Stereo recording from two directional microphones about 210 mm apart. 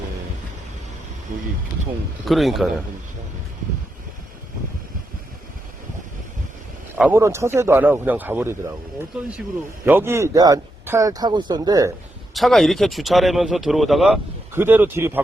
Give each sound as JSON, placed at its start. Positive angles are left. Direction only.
{"t": 1.3, "sound": "speech", "side_deg": -40}
{"t": 2.2, "sound": "speech", "side_deg": 0}
{"t": 6.9, "sound": "speech", "side_deg": -10}
{"t": 9.8, "sound": "speech", "side_deg": -10}
{"t": 12.3, "sound": "speech", "side_deg": 0}